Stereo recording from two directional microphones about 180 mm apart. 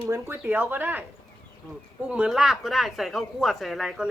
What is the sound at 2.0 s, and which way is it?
Speech, 5° right (ahead or behind).